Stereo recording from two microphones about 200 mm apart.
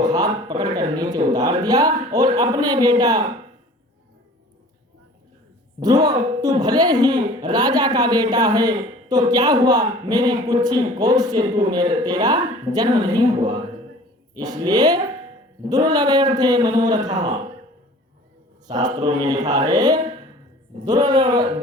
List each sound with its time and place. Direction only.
0.0 s speech: 20° right (ahead or behind)
5.8 s speech: 20° right (ahead or behind)
14.3 s speech: 20° right (ahead or behind)
18.9 s speech: 20° right (ahead or behind)